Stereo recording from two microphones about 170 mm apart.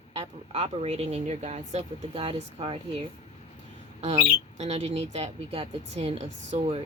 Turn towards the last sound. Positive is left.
turn(degrees=-35)  # may be behind; listen again after turning